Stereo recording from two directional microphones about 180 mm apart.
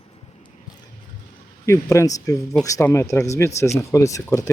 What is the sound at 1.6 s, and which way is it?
Speech, 15° left (ahead or behind).